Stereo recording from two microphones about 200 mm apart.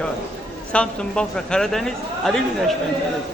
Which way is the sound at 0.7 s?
5° left (ahead or behind).